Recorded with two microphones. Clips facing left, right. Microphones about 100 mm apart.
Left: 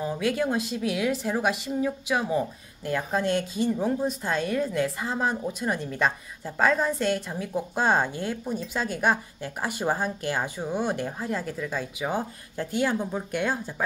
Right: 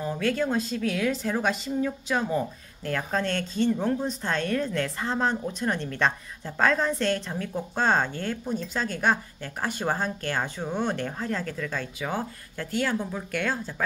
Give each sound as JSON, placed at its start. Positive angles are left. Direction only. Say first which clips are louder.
{"t": 0.0, "sound": "a woman's voice", "louder": "even", "side_deg": 15}